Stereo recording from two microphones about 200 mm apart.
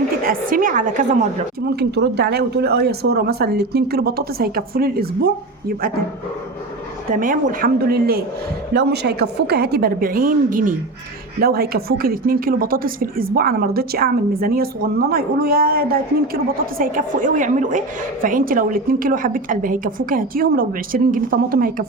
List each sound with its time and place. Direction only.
0.3 s a woman's voice: 45° right (ahead or behind)
1.7 s a woman's voice: 55° right (ahead or behind)
7.1 s a woman's voice: 40° right (ahead or behind)